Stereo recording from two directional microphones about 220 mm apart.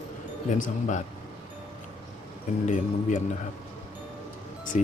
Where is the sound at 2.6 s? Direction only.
35° left (ahead or behind).